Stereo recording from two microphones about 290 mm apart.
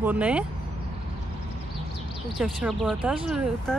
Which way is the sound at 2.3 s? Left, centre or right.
Centre.